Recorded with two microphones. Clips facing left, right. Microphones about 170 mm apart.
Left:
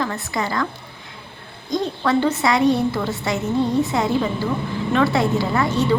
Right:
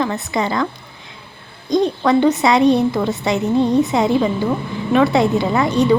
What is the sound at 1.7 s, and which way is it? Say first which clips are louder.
A woman's voice: right 5 dB; 15° right (ahead or behind).